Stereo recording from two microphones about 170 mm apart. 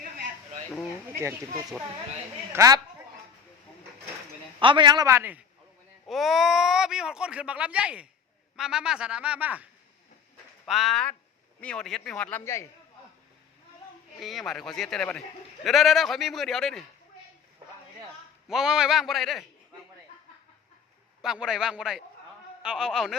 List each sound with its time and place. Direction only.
1.2 s a man's voice: 15° right (ahead or behind)
4.6 s a man's voice: 30° right (ahead or behind); by 5.4 s 10° right (ahead or behind)
6.1 s speech: centre (ahead or behind)
10.7 s speech: centre (ahead or behind)
14.2 s speech: centre (ahead or behind)
18.4 s speech: 5° right (ahead or behind)
21.2 s speech: 5° right (ahead or behind)